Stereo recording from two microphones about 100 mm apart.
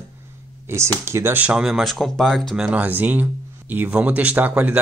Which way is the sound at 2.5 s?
10° right (ahead or behind).